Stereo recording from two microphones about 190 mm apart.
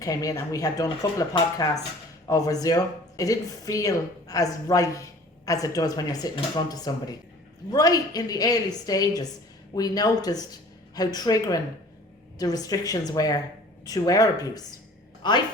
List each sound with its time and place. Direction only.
0.0 s speech: 20° left (ahead or behind)